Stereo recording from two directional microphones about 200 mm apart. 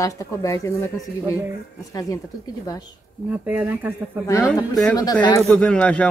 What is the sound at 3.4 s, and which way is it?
Speech, 10° right (ahead or behind).